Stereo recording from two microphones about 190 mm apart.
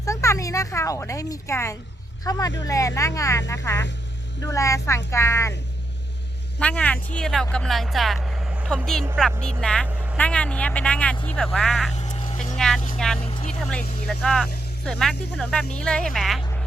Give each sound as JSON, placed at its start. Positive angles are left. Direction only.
{"t": 0.0, "sound": "speech", "side_deg": 15}
{"t": 6.6, "sound": "speech", "side_deg": 5}
{"t": 9.8, "sound": "vehicle", "side_deg": -5}
{"t": 10.2, "sound": "speech", "side_deg": 5}
{"t": 11.9, "sound": "a sound", "side_deg": 35}
{"t": 12.5, "sound": "speech", "side_deg": 5}
{"t": 13.2, "sound": "vehicle", "side_deg": 35}
{"t": 13.7, "sound": "speech", "side_deg": 5}